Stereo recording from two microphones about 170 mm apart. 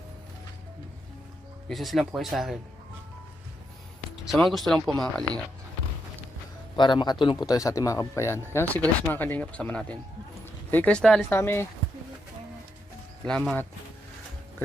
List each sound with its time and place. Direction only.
1.6 s speech: centre (ahead or behind)
4.3 s speech: centre (ahead or behind)
6.7 s speech: 25° left (ahead or behind)
13.2 s speech: 5° left (ahead or behind)